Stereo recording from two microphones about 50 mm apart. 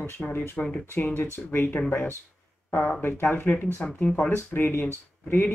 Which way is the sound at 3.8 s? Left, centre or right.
Left.